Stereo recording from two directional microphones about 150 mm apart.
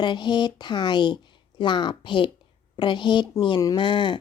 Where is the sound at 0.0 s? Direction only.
30° left (ahead or behind).